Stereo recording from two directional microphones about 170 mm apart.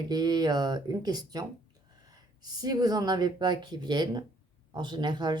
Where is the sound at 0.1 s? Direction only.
25° right (ahead or behind).